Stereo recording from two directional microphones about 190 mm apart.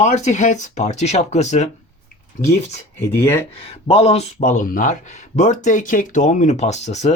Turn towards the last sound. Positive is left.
turn(degrees=35)  # may be behind; listen again after turning